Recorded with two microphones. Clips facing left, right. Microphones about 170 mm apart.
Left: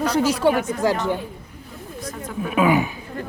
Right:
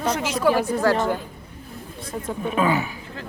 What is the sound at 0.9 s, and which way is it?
Speech, 15° left (ahead or behind).